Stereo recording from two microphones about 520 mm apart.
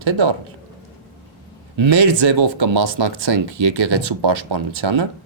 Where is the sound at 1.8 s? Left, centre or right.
Right.